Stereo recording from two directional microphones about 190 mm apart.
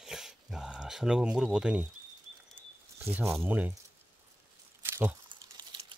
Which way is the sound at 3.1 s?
10° right (ahead or behind).